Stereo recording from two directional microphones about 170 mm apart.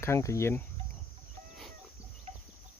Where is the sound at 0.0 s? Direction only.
15° left (ahead or behind).